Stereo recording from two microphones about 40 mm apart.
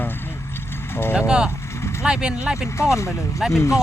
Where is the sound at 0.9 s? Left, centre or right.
Left.